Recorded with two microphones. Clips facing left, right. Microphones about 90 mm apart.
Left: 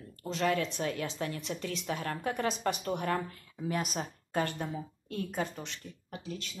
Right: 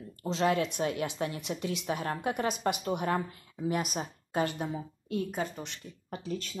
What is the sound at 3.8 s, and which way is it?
Speech, 5° right (ahead or behind).